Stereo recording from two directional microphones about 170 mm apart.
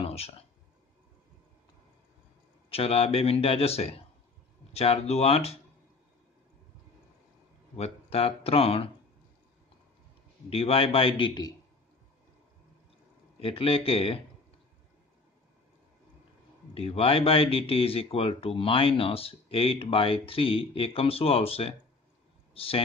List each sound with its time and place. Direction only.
0.0 s a sound: 35° left (ahead or behind)
2.7 s speech: 35° left (ahead or behind)
7.7 s speech: 35° left (ahead or behind)
10.5 s speech: 35° left (ahead or behind)
13.4 s speech: 35° left (ahead or behind)
16.7 s speech: 35° left (ahead or behind)